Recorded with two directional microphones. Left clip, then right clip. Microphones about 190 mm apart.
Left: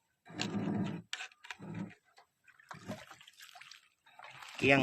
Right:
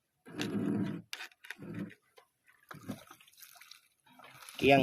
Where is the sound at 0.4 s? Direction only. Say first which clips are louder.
Right 3 dB; 50° right (ahead or behind).